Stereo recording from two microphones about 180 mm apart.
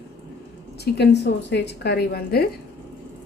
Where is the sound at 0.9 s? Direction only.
70° left (ahead or behind).